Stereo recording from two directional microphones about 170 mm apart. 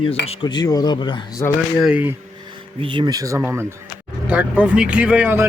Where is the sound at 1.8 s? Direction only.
5° right (ahead or behind).